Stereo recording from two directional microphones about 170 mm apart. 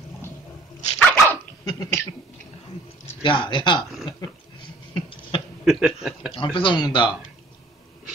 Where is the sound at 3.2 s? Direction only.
30° left (ahead or behind).